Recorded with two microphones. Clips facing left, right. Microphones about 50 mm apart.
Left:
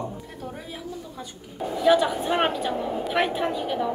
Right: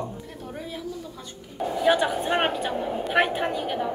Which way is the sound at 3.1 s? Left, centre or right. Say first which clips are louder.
Right 2 dB; right.